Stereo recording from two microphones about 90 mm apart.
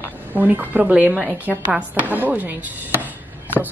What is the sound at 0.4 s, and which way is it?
Speech, 20° right (ahead or behind).